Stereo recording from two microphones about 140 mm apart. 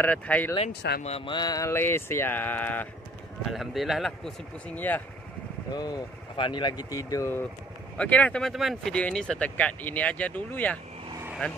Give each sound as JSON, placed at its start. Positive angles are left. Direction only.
{"t": 0.0, "sound": "speech", "side_deg": 10}
{"t": 1.0, "sound": "speech", "side_deg": 45}
{"t": 1.3, "sound": "speech", "side_deg": 30}
{"t": 3.4, "sound": "speech", "side_deg": 0}
{"t": 5.7, "sound": "speech", "side_deg": 30}
{"t": 8.0, "sound": "speech", "side_deg": 10}